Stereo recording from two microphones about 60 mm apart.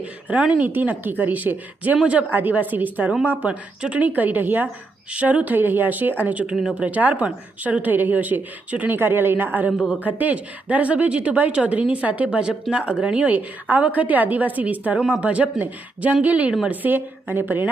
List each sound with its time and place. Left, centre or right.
0.0 s a woman's voice: right